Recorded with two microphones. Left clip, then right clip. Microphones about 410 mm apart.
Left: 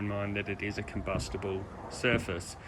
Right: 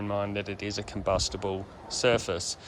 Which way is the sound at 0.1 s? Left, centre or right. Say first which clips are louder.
Right 6 dB; centre.